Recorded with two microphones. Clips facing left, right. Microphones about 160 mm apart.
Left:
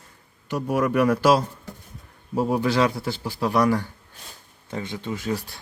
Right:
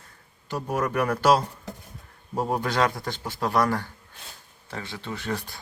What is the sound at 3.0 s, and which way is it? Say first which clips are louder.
Speech: left 3 dB; 10° left (ahead or behind).